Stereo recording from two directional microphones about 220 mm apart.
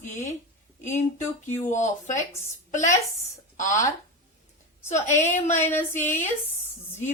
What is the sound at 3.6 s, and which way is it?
Speech, 35° left (ahead or behind).